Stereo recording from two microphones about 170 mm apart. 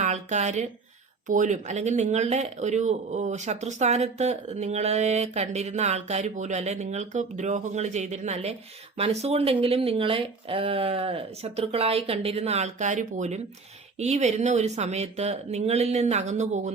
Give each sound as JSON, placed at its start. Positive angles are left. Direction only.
{"t": 0.0, "sound": "speech", "side_deg": -45}